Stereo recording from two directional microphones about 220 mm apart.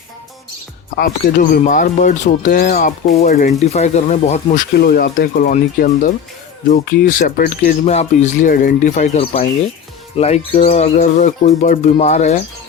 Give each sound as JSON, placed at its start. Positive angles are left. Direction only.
{"t": 0.9, "sound": "speech", "side_deg": 40}
{"t": 4.8, "sound": "speech", "side_deg": 45}